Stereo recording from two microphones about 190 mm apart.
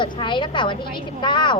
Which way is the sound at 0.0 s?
25° left (ahead or behind).